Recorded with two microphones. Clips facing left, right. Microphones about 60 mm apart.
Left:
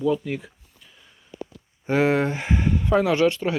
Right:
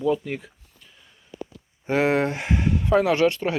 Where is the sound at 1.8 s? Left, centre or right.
Centre.